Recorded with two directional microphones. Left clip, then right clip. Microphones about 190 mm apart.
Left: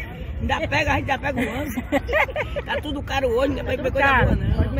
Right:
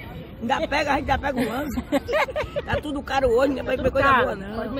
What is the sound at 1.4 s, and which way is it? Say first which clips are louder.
Speech: even; 5° right (ahead or behind).